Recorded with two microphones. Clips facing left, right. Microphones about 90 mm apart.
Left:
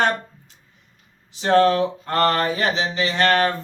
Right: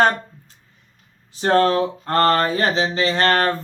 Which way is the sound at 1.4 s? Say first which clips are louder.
Even; 40° right (ahead or behind).